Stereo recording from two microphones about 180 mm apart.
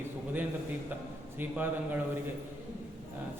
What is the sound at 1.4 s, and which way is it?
Speech, 10° right (ahead or behind).